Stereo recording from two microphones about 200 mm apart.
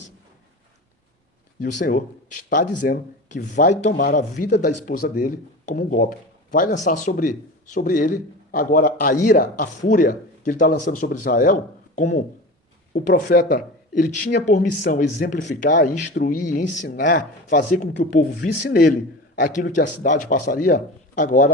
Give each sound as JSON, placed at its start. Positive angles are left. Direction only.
{"t": 1.6, "sound": "speech", "side_deg": 40}
{"t": 19.4, "sound": "speech", "side_deg": 40}